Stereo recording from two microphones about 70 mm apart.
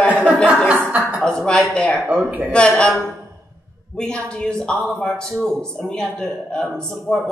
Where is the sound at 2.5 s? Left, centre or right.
Centre.